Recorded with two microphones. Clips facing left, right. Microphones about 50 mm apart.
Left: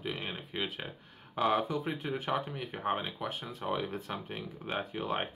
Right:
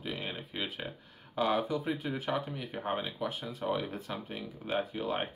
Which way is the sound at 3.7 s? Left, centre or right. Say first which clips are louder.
Even; centre.